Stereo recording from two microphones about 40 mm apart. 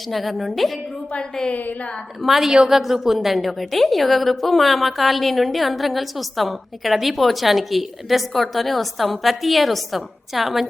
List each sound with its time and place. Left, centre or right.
0.1 s a woman's voice: centre
1.1 s a woman's voice: left
2.2 s a woman's voice: centre